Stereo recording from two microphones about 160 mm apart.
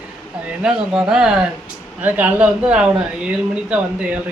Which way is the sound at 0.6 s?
5° right (ahead or behind).